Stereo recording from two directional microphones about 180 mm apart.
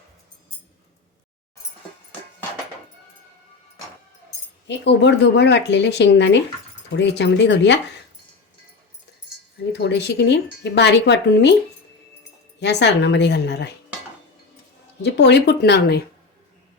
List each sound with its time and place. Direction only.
4.7 s speech: 75° left (ahead or behind)
9.7 s speech: 70° left (ahead or behind)
12.5 s speech: 70° left (ahead or behind)
15.0 s speech: 70° left (ahead or behind)